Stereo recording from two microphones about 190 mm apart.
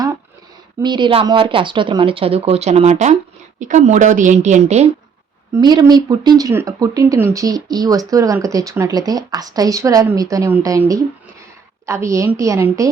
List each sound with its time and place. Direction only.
0.8 s speech: 25° right (ahead or behind)
5.5 s speech: 20° right (ahead or behind)
11.9 s a woman's voice: 15° right (ahead or behind)